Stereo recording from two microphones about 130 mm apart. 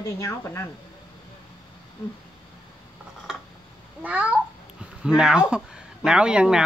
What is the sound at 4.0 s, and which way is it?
Speech, 10° right (ahead or behind).